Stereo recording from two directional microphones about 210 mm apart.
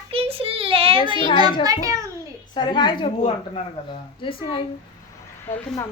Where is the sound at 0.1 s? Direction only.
25° right (ahead or behind).